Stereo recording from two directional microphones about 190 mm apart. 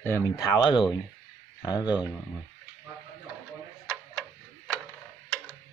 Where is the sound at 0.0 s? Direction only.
15° left (ahead or behind).